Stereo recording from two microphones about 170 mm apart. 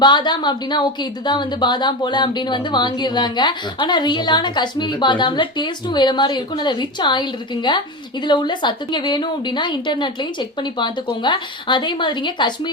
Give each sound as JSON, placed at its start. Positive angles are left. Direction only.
{"t": 0.0, "sound": "speech", "side_deg": 25}